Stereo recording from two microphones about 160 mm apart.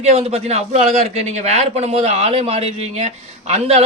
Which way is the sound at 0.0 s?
40° right (ahead or behind).